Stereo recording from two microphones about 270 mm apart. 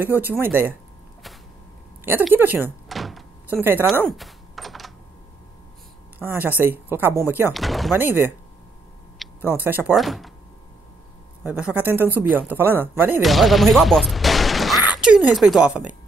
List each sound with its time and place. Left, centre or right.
0.0 s speech: centre
2.0 s door: centre
3.9 s typing: centre
6.1 s speech: centre
9.2 s a sound: centre
9.6 s speech: centre
11.4 s speech: centre